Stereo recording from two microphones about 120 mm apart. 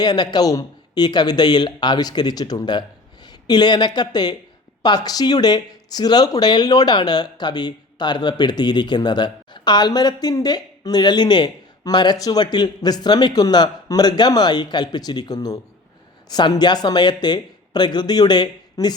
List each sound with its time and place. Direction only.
0.0 s speech: 35° left (ahead or behind)